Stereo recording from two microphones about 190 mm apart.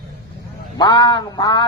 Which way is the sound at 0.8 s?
25° left (ahead or behind).